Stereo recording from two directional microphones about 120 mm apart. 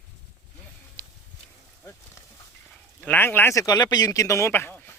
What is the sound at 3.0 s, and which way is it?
Speech, 15° left (ahead or behind).